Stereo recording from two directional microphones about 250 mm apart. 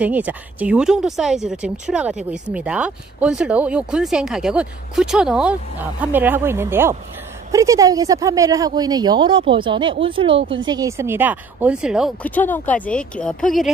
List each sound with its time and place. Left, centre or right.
0.0 s speech: centre